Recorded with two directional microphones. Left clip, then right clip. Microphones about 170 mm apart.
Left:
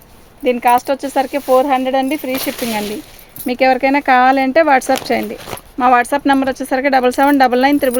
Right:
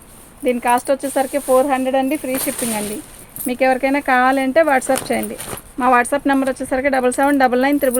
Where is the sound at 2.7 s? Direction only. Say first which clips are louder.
Left 4 dB; 60° left (ahead or behind).